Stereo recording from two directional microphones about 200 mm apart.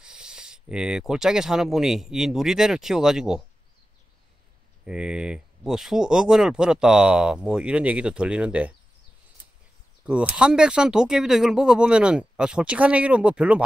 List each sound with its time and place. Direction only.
0.0 s speech: 5° right (ahead or behind)
4.8 s speech: 5° right (ahead or behind)
10.0 s speech: 5° right (ahead or behind)